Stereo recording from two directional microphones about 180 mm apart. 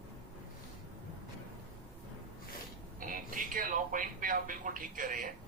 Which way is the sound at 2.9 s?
50° right (ahead or behind).